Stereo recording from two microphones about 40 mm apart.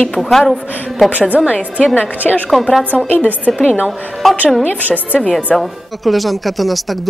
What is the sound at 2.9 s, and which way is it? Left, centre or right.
Speech, left.